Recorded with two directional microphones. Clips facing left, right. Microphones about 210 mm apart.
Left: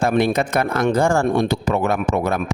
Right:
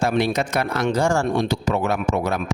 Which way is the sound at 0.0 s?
50° left (ahead or behind).